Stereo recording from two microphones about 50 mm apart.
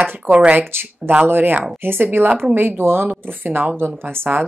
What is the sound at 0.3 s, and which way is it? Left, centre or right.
Speech, right.